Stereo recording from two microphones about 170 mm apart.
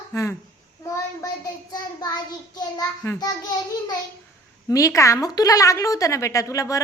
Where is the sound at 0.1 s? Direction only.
15° left (ahead or behind).